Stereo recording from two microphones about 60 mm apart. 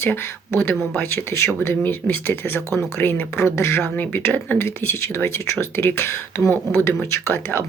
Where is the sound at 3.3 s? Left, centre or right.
Left.